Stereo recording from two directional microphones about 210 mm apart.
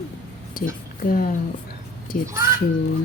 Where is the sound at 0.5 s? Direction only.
45° left (ahead or behind).